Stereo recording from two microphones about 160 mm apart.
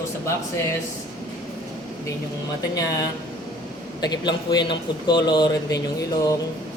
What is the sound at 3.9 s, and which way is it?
Speech, 25° left (ahead or behind).